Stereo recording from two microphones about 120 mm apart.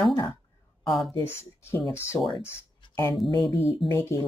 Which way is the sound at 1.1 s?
20° left (ahead or behind).